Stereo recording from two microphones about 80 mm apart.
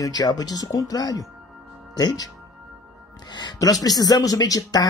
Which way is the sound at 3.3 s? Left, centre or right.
Left.